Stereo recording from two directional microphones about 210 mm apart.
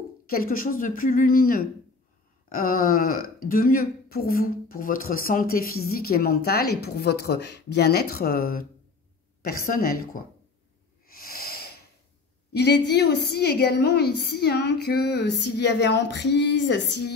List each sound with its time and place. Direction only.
0.3 s a woman's voice: 45° left (ahead or behind)
11.1 s a sound: 45° left (ahead or behind)
12.5 s speech: 50° left (ahead or behind)